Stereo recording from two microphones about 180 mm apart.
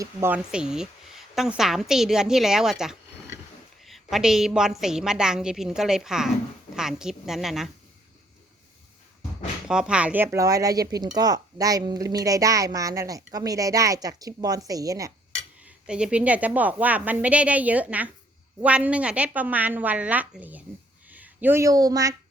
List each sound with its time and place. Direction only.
0.0 s a woman's voice: 10° right (ahead or behind)
9.6 s speech: 5° right (ahead or behind)
15.6 s a woman's voice: 5° right (ahead or behind)